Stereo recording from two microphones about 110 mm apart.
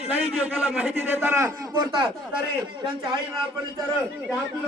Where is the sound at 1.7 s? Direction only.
45° right (ahead or behind).